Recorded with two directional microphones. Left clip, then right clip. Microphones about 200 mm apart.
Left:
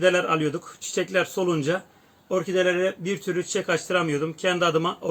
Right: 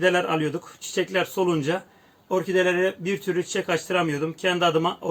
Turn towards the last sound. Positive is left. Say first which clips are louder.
# right 1 dB
turn(degrees=0)  # may be behind; listen again after turning